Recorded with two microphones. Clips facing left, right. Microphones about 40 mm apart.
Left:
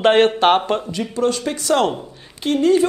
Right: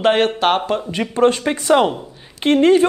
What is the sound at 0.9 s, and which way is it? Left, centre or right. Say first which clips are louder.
A man's voice: right 4 dB; right.